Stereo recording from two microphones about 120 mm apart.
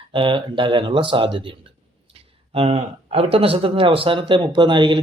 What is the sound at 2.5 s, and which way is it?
Speech, 60° right (ahead or behind).